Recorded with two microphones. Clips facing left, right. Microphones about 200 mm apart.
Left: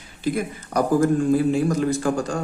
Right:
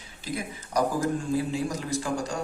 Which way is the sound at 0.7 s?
55° left (ahead or behind).